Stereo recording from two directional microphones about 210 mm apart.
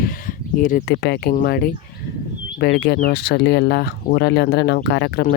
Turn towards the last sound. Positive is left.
turn(degrees=50)  # may be behind; listen again after turning